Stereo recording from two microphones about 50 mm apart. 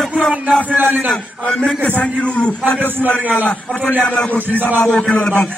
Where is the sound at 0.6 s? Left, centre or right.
Right.